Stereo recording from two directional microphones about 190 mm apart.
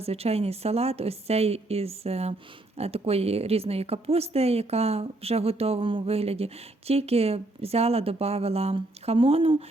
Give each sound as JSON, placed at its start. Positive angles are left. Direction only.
{"t": 0.0, "sound": "a woman's voice", "side_deg": -30}